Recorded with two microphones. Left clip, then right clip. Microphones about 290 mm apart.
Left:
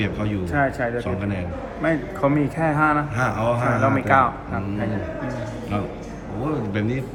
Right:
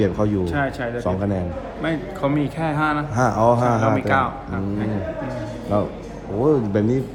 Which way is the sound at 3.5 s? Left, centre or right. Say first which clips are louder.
Even; centre.